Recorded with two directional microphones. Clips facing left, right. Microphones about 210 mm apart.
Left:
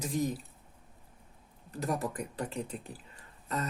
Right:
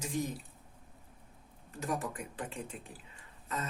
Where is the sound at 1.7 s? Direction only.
35° left (ahead or behind).